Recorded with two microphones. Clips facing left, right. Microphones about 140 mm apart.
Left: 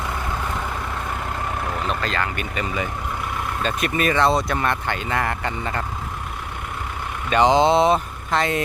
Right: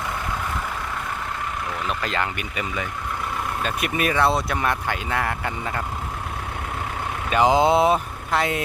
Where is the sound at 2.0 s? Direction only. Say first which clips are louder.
Left 1 dB; 15° right (ahead or behind).